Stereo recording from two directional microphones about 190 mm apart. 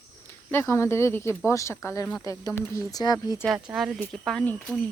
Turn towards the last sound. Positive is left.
turn(degrees=5)  # may be behind; listen again after turning